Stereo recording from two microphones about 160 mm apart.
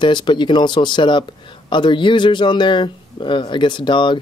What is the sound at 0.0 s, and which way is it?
Speech, 30° left (ahead or behind).